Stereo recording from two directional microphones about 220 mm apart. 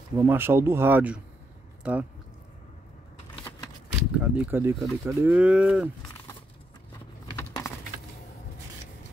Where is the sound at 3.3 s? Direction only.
20° left (ahead or behind).